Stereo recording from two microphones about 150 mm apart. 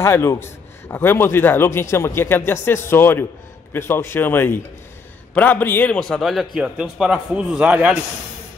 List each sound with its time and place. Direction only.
0.0 s a man's voice: 20° left (ahead or behind); by 8.0 s 10° right (ahead or behind)